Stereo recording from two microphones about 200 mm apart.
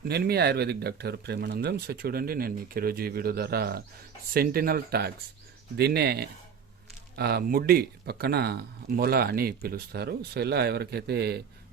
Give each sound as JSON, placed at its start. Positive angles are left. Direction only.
{"t": 0.1, "sound": "speech", "side_deg": -55}